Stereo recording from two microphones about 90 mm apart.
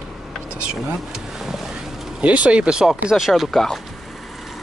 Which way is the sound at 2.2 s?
15° right (ahead or behind).